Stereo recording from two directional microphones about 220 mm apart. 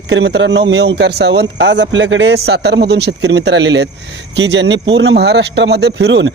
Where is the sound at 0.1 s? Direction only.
55° right (ahead or behind).